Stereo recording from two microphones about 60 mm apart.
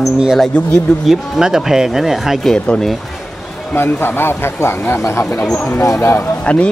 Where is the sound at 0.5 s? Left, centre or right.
Centre.